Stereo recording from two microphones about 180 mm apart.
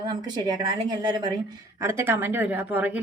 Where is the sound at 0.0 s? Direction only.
25° right (ahead or behind).